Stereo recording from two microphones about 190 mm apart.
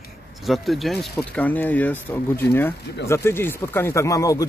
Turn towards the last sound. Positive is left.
turn(degrees=20)  # may be behind; listen again after turning